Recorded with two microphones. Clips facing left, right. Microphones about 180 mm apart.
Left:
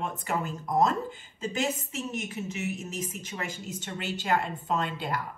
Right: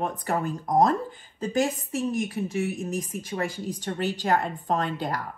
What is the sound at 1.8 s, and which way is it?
Speech, 35° right (ahead or behind).